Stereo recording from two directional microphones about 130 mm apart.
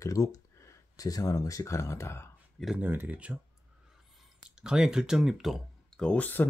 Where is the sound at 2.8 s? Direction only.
15° right (ahead or behind).